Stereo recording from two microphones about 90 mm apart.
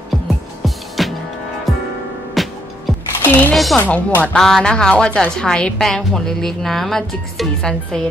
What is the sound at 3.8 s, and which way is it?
Speech, 20° left (ahead or behind).